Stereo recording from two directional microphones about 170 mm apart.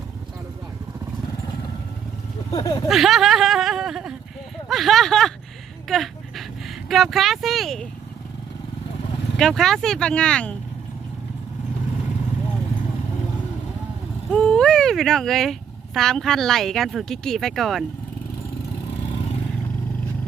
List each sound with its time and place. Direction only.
2.5 s speech: 20° left (ahead or behind)
2.9 s speech: centre (ahead or behind)
9.4 s speech: centre (ahead or behind)
14.3 s speech: 5° left (ahead or behind)